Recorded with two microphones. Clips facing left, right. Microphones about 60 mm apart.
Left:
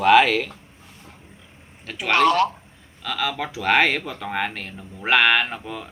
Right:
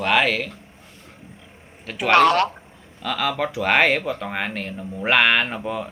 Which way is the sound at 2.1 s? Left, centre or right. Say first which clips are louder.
Right 2 dB; right.